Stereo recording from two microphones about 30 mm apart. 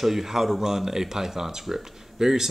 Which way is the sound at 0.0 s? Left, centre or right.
Centre.